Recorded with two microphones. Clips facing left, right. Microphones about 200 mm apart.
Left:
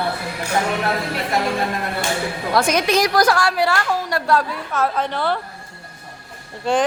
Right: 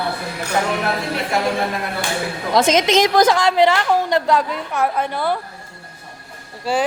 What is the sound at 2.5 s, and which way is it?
A woman's voice, 20° right (ahead or behind).